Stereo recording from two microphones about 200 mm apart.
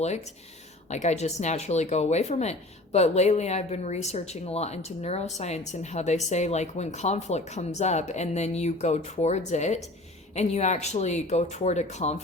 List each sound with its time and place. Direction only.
0.9 s speech: 35° left (ahead or behind)